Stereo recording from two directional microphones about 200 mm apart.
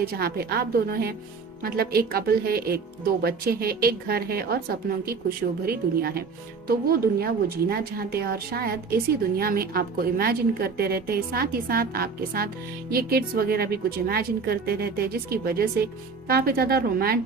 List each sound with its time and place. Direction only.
0.0 s a woman's voice: 50° right (ahead or behind)